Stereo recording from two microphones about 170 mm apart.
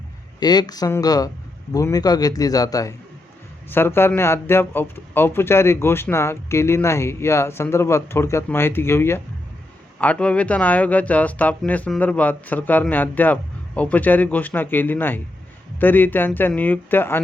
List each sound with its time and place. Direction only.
0.3 s speech: 25° left (ahead or behind)